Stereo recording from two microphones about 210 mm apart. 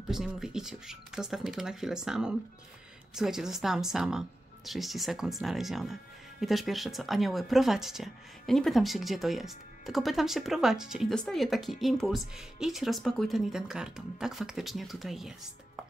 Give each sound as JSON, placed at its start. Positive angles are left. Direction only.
{"t": 0.1, "sound": "speech", "side_deg": 0}